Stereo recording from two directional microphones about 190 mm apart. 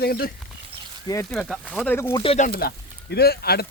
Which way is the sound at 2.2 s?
35° left (ahead or behind).